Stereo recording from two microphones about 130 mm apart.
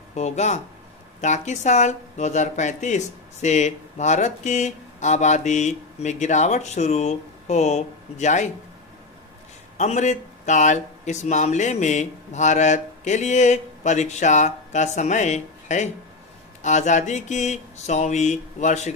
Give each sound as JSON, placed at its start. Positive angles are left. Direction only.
{"t": 0.1, "sound": "speech", "side_deg": 60}
{"t": 9.7, "sound": "speech", "side_deg": 65}